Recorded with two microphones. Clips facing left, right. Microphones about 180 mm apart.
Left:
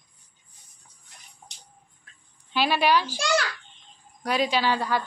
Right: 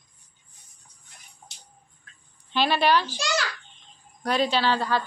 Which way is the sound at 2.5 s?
10° left (ahead or behind).